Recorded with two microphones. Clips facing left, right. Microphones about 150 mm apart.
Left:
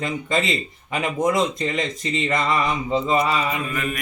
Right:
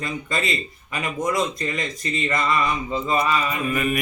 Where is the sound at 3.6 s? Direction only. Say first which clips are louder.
Right 4 dB; 10° right (ahead or behind).